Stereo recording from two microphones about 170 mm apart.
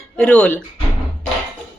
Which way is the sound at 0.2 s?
5° left (ahead or behind).